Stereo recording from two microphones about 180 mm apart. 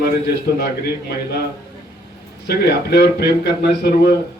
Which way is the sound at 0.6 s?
65° left (ahead or behind).